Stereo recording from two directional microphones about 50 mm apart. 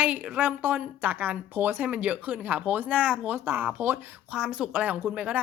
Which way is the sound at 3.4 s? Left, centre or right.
Right.